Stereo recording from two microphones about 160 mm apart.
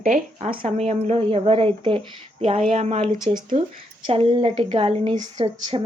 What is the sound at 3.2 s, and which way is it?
Speech, 30° right (ahead or behind).